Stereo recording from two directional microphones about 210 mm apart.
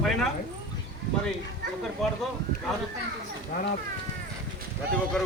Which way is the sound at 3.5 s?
45° left (ahead or behind).